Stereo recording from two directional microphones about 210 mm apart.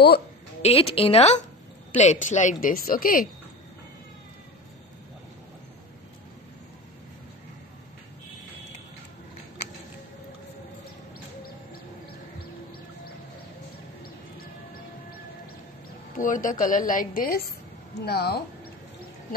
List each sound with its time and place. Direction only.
0.6 s a woman's voice: 30° left (ahead or behind)
16.2 s speech: 40° left (ahead or behind)